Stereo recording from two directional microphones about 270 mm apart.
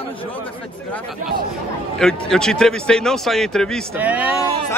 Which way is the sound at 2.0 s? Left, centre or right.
Centre.